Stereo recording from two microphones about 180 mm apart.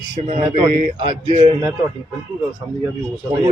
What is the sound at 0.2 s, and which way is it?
Speech, 40° right (ahead or behind).